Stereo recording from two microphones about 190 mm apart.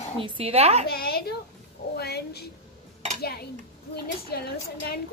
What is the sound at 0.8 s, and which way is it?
Speech, 55° left (ahead or behind).